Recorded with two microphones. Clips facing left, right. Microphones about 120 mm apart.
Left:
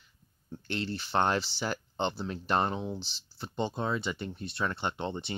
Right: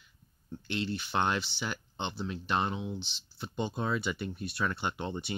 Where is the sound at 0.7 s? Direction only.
40° left (ahead or behind).